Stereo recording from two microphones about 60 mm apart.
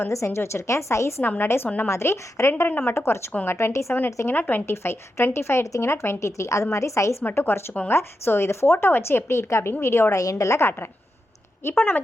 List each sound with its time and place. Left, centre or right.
0.1 s speech: left
1.2 s a woman's voice: left
1.9 s speech: left
2.6 s a woman's voice: left
2.9 s speech: left
4.3 s a woman's voice: left
4.6 s speech: left
7.3 s speech: left
10.2 s a woman's voice: left